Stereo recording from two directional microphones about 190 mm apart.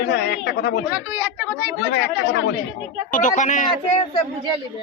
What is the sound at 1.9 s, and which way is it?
Speech, 60° left (ahead or behind).